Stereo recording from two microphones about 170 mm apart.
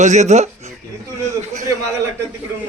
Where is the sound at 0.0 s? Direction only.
45° right (ahead or behind).